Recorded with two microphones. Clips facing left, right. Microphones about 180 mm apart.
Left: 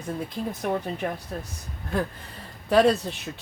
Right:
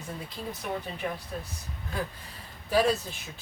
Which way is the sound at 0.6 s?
50° left (ahead or behind).